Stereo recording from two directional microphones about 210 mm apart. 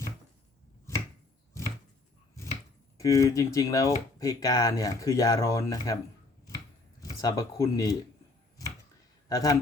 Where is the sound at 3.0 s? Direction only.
15° left (ahead or behind).